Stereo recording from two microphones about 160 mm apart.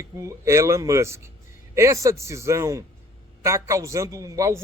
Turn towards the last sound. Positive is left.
turn(degrees=-20)  # may be behind; listen again after turning